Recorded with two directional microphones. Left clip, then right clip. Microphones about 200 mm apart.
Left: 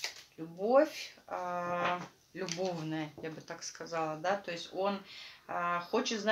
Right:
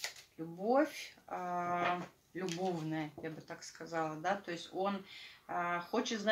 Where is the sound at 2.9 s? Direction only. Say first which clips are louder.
Left 2 dB; 20° left (ahead or behind).